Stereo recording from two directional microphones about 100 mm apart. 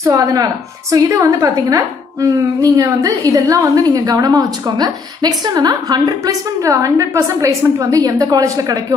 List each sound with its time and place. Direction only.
0.0 s a woman's voice: 35° right (ahead or behind)